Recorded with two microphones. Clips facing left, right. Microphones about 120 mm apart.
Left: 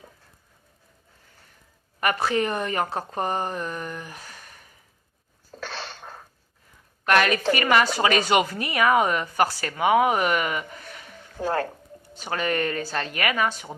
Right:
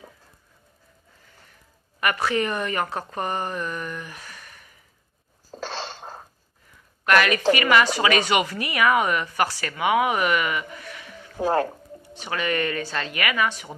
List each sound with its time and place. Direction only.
2.0 s speech: 35° left (ahead or behind)
5.5 s a sound: 25° right (ahead or behind)
7.0 s a woman's voice: 35° left (ahead or behind)
8.2 s speech: centre (ahead or behind)
8.7 s speech: 35° left (ahead or behind)
10.9 s a sound: 45° left (ahead or behind)
11.3 s speech: 20° right (ahead or behind)
12.2 s speech: 40° left (ahead or behind)
13.5 s speech: centre (ahead or behind)